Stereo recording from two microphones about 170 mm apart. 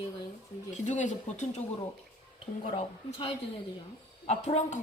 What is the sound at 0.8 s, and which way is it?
Speech, 45° left (ahead or behind).